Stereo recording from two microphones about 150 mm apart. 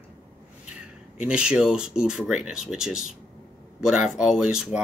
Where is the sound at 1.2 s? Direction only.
5° right (ahead or behind).